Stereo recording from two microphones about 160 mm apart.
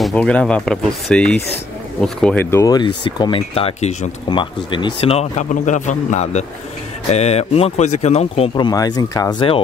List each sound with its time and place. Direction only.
0.0 s speech: 5° left (ahead or behind)
2.5 s speech: 25° left (ahead or behind); by 4.1 s 40° left (ahead or behind)
4.3 s speech: 30° left (ahead or behind)
8.5 s speech: 25° left (ahead or behind)